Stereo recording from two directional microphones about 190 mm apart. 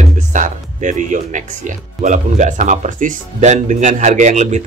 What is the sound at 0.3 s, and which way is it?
Speech, 40° right (ahead or behind).